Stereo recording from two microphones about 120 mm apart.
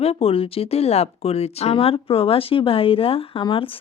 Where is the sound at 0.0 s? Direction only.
55° left (ahead or behind).